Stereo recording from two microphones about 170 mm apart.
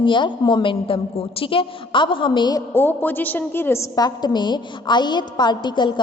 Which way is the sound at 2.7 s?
10° left (ahead or behind).